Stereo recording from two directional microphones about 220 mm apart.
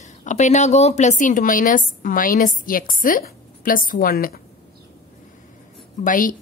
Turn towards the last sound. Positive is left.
turn(degrees=40)  # may be behind; listen again after turning